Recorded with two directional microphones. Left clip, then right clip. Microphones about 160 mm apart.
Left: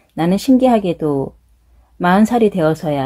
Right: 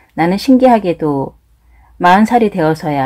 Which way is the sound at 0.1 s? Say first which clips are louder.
Right 3 dB; 30° left (ahead or behind).